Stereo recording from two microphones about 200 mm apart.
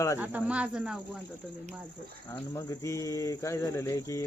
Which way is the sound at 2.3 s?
15° left (ahead or behind).